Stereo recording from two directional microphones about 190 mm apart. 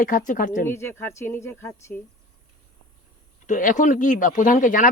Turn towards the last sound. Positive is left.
turn(degrees=45)  # may be behind; listen again after turning